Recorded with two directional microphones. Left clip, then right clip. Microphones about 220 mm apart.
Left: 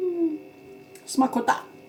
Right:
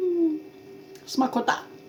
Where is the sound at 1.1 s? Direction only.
10° right (ahead or behind).